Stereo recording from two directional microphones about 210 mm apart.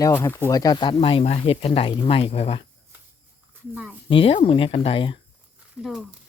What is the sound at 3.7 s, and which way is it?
Speech, 5° right (ahead or behind).